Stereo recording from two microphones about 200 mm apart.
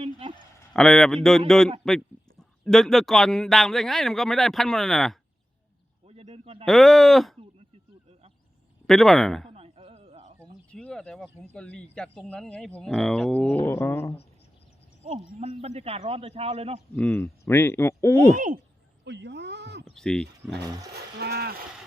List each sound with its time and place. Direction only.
0.0 s a sound: 30° right (ahead or behind)
0.7 s a man's voice: 5° left (ahead or behind)
6.1 s speech: 30° right (ahead or behind)
6.7 s a man's voice: centre (ahead or behind)
8.9 s a man's voice: centre (ahead or behind)
9.5 s a sound: 30° right (ahead or behind)
10.4 s a sound: 5° left (ahead or behind)
11.5 s a man's voice: 5° left (ahead or behind)
15.1 s speech: 35° right (ahead or behind)
16.9 s speech: 10° left (ahead or behind)
18.3 s speech: 40° right (ahead or behind)
19.0 s a sound: 60° right (ahead or behind)
19.8 s sheep: 5° left (ahead or behind)
20.9 s speech: 55° right (ahead or behind)